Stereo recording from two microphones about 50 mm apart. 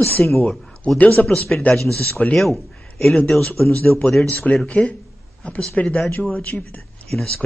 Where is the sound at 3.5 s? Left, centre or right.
Left.